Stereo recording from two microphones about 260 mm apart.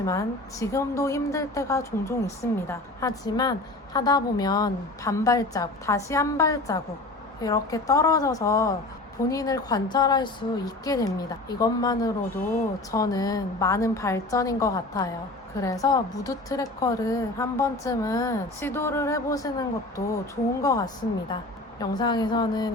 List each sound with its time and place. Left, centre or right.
0.0 s a woman's voice: centre